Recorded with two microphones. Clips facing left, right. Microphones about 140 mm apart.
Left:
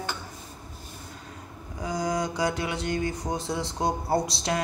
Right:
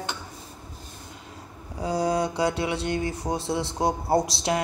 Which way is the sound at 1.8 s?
30° right (ahead or behind).